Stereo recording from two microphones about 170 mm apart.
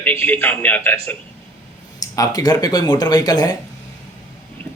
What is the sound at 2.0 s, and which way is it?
Speech, 20° left (ahead or behind).